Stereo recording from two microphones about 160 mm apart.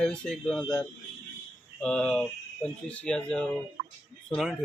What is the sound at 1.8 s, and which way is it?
Speech, 5° left (ahead or behind).